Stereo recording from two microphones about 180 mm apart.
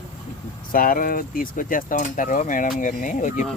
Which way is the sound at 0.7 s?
50° left (ahead or behind).